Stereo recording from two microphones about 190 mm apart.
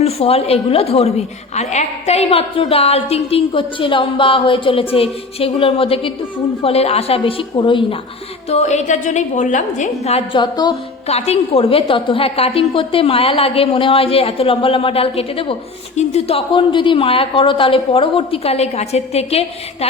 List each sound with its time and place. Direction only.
0.0 s a woman's voice: 30° left (ahead or behind)
8.4 s a woman's voice: 35° left (ahead or behind)
10.4 s a woman's voice: 20° left (ahead or behind)